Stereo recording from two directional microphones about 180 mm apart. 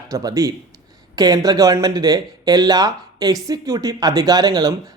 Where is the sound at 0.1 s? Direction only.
20° right (ahead or behind).